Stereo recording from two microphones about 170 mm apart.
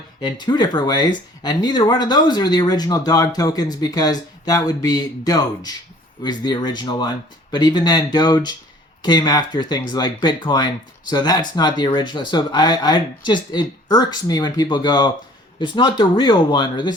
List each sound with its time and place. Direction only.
0.2 s speech: 25° left (ahead or behind)